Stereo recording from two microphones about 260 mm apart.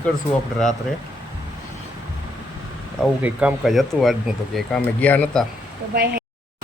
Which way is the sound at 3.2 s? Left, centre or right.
Centre.